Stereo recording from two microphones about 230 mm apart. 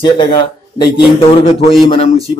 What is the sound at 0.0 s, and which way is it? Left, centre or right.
A man's voice, left.